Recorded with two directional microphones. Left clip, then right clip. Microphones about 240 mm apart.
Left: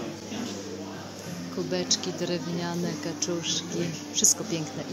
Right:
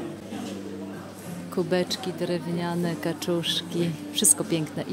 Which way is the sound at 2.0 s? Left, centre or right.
Centre.